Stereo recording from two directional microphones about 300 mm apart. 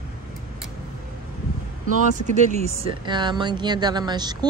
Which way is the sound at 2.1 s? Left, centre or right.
Right.